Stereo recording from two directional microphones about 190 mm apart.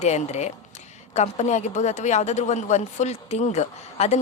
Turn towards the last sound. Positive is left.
turn(degrees=35)  # may be behind; listen again after turning